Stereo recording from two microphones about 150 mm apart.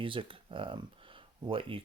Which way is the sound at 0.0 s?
35° right (ahead or behind).